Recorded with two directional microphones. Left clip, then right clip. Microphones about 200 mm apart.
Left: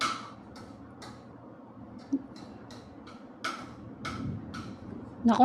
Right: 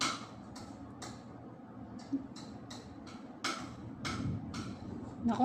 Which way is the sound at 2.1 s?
55° left (ahead or behind).